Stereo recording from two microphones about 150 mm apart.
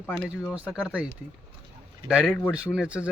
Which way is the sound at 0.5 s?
5° right (ahead or behind).